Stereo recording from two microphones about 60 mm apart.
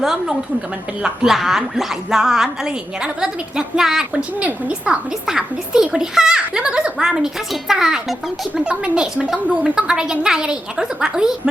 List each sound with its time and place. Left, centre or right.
0.0 s speech: centre
4.2 s a woman's voice: centre